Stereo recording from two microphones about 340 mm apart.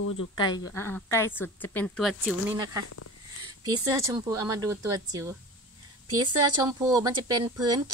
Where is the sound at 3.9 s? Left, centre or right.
Centre.